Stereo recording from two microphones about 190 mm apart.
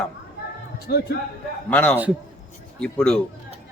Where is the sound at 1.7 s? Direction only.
5° left (ahead or behind).